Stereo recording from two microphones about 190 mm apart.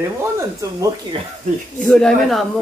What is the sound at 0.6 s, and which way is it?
Speech, 15° right (ahead or behind).